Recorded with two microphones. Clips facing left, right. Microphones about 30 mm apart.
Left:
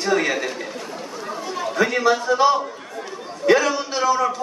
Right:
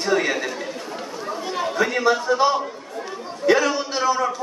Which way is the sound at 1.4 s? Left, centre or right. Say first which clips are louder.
Right 2 dB; right.